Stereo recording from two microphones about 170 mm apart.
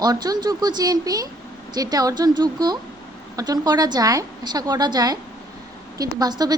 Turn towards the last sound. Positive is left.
turn(degrees=-25)  # may be behind; listen again after turning